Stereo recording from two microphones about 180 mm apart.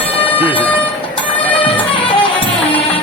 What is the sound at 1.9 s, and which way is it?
Music, 30° left (ahead or behind).